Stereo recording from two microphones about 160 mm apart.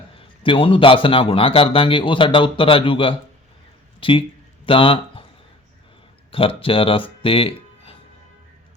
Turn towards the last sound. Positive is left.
turn(degrees=35)  # may be behind; listen again after turning